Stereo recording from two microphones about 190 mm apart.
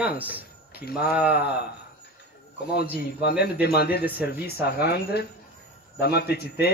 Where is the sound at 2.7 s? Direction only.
55° left (ahead or behind).